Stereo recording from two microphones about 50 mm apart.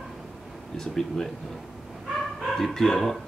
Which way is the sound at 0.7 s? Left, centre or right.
Centre.